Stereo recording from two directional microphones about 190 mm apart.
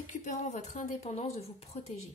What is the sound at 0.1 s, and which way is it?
A woman's voice, 40° left (ahead or behind).